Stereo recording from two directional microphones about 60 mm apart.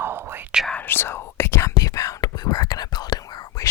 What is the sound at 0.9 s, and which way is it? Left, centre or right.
Whispering, left.